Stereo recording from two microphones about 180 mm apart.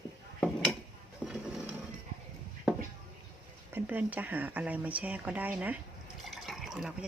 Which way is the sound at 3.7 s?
10° right (ahead or behind).